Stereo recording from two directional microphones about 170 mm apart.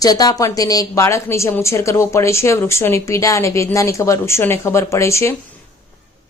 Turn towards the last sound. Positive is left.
turn(degrees=15)  # may be behind; listen again after turning